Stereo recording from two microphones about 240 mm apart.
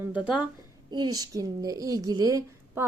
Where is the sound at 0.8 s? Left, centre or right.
Centre.